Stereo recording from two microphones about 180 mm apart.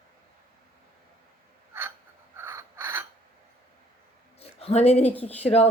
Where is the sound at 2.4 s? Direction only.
15° right (ahead or behind).